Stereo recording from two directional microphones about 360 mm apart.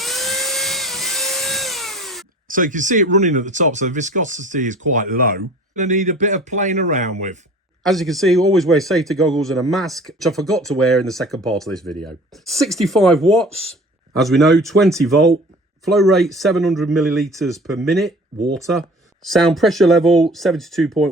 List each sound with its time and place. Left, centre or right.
0.0 s dental drill: centre
2.5 s speech: right
7.9 s speech: centre